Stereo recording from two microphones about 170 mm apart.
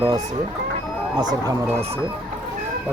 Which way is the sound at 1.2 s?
25° right (ahead or behind).